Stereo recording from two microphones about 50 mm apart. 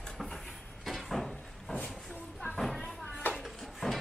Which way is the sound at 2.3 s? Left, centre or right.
Centre.